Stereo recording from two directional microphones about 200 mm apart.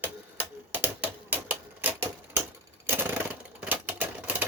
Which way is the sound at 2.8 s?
10° right (ahead or behind).